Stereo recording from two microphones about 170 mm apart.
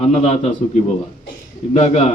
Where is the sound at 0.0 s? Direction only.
40° left (ahead or behind).